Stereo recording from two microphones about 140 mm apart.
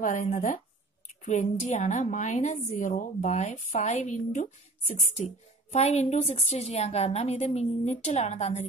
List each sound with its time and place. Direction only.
0.0 s a woman's voice: 65° left (ahead or behind)